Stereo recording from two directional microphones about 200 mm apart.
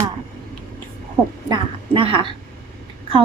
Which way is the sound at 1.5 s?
25° right (ahead or behind).